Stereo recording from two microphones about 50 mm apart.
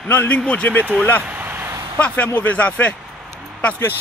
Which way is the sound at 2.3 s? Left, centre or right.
Left.